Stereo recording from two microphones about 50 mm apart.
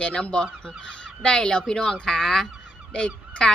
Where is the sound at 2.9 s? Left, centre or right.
Centre.